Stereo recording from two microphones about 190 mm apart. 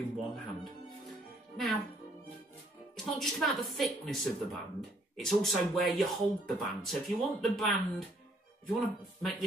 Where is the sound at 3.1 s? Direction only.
Centre (ahead or behind).